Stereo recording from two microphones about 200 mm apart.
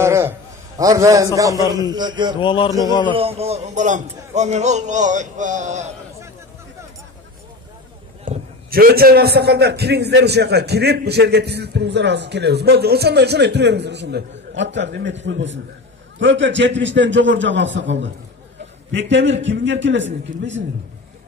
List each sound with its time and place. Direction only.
0.0 s a man's voice: 15° right (ahead or behind)
2.3 s a man's voice: 25° left (ahead or behind)
3.1 s a man's voice: 30° right (ahead or behind)
8.3 s a man's voice: 45° right (ahead or behind); by 20.1 s 65° right (ahead or behind)